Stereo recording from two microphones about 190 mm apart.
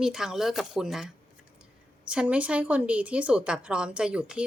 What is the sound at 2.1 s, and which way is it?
Speech, 5° right (ahead or behind).